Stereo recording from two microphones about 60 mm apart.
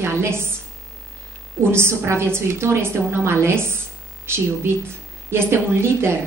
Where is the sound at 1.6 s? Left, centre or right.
Right.